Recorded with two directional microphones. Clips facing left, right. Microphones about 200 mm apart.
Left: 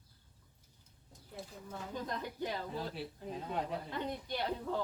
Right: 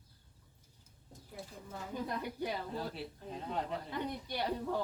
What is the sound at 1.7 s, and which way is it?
Speech, 5° right (ahead or behind).